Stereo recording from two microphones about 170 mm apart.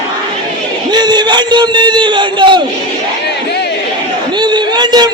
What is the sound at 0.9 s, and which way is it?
A man's voice, 25° right (ahead or behind).